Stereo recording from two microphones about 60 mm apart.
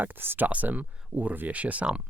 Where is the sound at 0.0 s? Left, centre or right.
Right.